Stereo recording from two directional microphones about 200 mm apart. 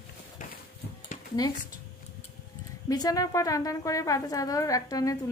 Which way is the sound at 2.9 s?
20° left (ahead or behind).